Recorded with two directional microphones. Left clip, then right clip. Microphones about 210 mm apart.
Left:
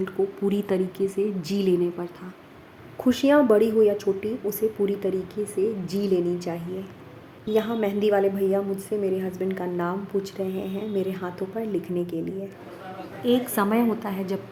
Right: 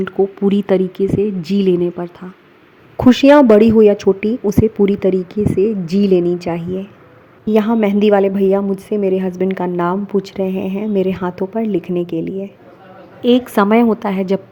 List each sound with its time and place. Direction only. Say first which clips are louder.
0.0 s a woman's voice: right 9 dB; 35° right (ahead or behind)